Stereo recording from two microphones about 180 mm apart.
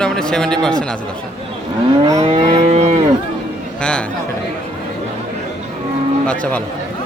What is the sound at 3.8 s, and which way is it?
Speech, 5° left (ahead or behind).